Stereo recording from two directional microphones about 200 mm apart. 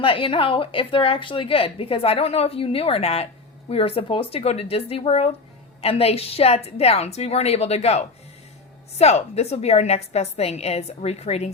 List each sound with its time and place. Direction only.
0.0 s a woman's voice: 25° left (ahead or behind)